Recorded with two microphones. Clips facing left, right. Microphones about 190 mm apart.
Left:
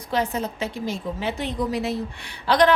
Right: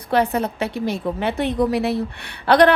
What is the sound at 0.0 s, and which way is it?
A woman's voice, 60° right (ahead or behind).